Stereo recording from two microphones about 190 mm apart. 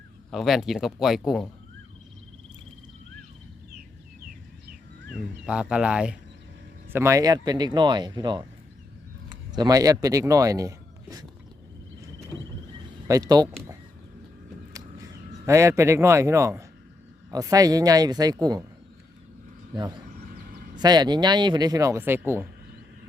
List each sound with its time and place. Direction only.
0.3 s speech: centre (ahead or behind)
5.5 s speech: 5° right (ahead or behind)
13.1 s speech: 20° right (ahead or behind)
15.4 s speech: 15° right (ahead or behind)
20.7 s speech: 20° right (ahead or behind)